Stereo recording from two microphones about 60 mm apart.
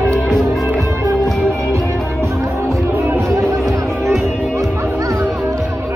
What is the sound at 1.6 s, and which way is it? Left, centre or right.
Music, right.